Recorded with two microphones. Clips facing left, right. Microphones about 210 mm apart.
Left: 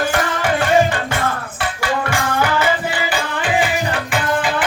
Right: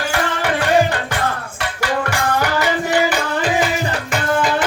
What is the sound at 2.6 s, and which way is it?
Music, 45° right (ahead or behind).